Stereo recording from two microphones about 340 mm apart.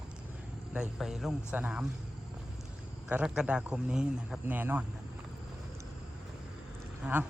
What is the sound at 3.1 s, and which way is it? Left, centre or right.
A man's voice, centre.